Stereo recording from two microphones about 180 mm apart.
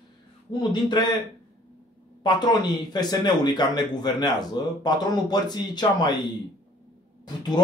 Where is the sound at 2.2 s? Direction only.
25° left (ahead or behind).